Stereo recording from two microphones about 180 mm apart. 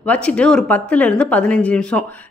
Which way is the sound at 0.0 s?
5° left (ahead or behind).